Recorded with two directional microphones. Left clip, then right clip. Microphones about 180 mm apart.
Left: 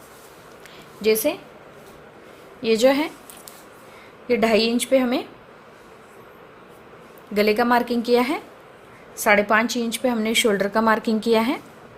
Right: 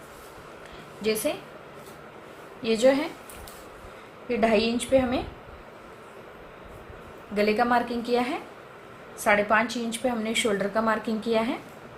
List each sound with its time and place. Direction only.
1.0 s a woman's voice: 50° left (ahead or behind)
2.6 s a woman's voice: 50° left (ahead or behind)
4.3 s a woman's voice: 60° left (ahead or behind)
7.3 s a woman's voice: 55° left (ahead or behind)